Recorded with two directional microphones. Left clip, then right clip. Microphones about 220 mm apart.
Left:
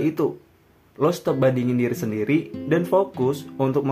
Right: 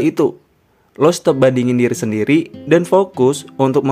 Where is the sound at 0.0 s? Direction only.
40° right (ahead or behind).